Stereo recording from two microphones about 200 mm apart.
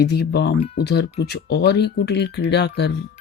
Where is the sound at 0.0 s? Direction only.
55° left (ahead or behind).